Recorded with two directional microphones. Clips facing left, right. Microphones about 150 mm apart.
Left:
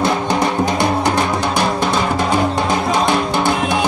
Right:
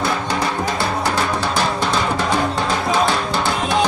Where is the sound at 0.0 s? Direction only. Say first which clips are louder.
Left 4 dB; 20° left (ahead or behind).